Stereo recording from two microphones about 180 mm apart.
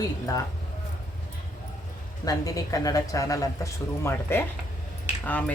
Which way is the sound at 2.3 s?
20° left (ahead or behind).